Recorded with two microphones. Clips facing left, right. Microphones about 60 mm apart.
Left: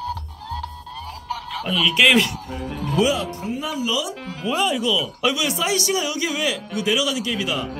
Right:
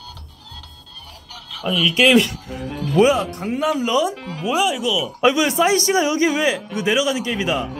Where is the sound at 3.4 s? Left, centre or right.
Right.